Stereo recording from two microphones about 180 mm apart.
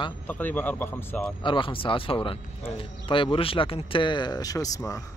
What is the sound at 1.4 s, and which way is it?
Speech, 30° left (ahead or behind).